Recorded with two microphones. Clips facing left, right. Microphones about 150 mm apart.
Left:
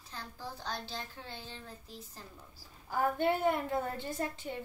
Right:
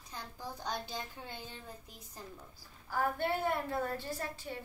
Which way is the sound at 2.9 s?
15° left (ahead or behind).